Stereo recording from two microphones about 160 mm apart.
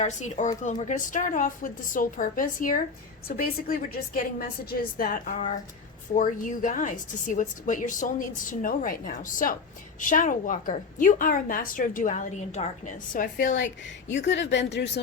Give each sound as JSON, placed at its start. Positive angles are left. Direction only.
{"t": 0.0, "sound": "a woman's voice", "side_deg": 50}
{"t": 14.1, "sound": "speech", "side_deg": 90}